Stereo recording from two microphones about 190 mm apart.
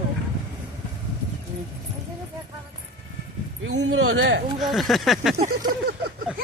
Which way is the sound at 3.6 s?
70° right (ahead or behind).